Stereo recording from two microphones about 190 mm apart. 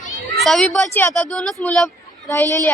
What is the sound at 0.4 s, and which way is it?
Speech, centre (ahead or behind).